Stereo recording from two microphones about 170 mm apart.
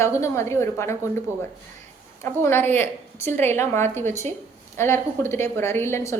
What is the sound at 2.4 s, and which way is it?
A woman's voice, 15° left (ahead or behind).